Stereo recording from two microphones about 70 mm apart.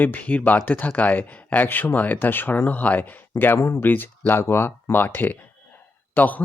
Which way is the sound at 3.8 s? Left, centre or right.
Left.